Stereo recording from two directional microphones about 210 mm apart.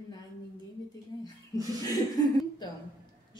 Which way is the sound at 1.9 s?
20° left (ahead or behind).